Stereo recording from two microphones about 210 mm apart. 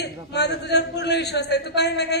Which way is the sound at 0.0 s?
55° left (ahead or behind).